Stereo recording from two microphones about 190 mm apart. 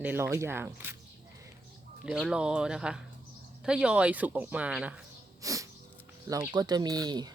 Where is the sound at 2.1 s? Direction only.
5° right (ahead or behind).